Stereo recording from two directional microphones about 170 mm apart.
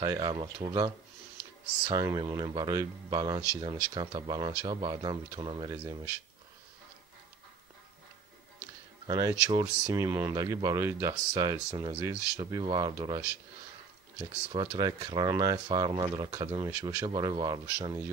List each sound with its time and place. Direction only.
0.0 s speech: 25° right (ahead or behind)
9.0 s speech: 20° right (ahead or behind)